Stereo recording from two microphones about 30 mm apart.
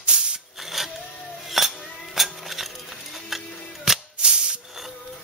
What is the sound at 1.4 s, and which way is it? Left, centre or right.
Music, centre.